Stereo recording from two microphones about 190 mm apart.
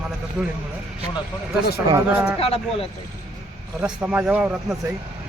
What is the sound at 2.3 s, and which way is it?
Speech, 30° left (ahead or behind).